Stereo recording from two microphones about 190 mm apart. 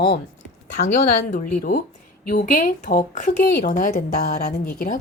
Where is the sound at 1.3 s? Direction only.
45° left (ahead or behind).